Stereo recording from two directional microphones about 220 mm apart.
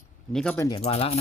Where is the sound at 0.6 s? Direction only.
25° left (ahead or behind).